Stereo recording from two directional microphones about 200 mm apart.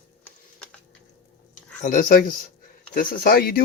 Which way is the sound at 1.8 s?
40° left (ahead or behind).